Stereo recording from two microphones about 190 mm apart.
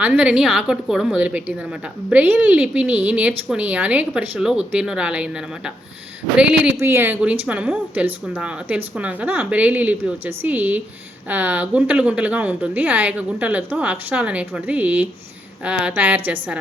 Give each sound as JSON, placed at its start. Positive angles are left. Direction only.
{"t": 0.0, "sound": "a woman's voice", "side_deg": -5}